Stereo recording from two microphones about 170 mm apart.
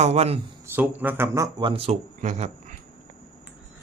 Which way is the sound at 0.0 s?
40° right (ahead or behind).